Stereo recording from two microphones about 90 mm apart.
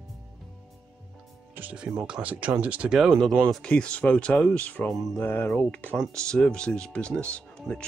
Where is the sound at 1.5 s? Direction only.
15° right (ahead or behind).